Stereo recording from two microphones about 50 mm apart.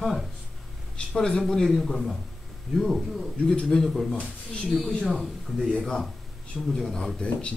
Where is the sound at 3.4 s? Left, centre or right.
Centre.